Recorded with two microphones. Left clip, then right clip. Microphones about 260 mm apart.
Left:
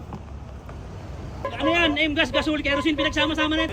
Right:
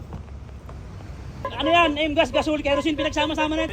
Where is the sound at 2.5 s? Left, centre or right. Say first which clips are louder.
Right 1 dB; centre.